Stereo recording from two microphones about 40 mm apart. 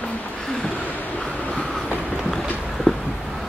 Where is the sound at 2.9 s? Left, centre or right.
Right.